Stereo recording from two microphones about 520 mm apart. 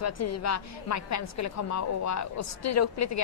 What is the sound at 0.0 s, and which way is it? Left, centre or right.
A woman's voice, left.